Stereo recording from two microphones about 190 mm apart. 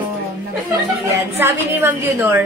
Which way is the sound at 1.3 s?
10° right (ahead or behind).